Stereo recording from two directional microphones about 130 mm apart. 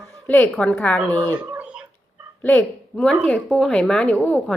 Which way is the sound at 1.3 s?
15° right (ahead or behind).